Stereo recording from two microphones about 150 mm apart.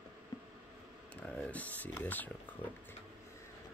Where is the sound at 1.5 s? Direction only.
10° left (ahead or behind).